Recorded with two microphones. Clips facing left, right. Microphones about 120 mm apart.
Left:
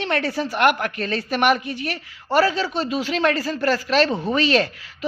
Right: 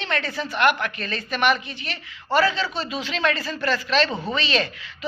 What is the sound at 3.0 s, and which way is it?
Speech, 50° left (ahead or behind).